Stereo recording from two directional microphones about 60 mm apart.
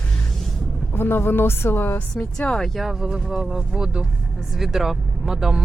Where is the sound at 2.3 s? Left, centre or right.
Centre.